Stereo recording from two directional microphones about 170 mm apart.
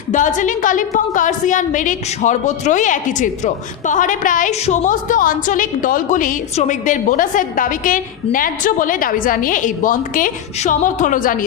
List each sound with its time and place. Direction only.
0.1 s a woman's voice: 50° left (ahead or behind)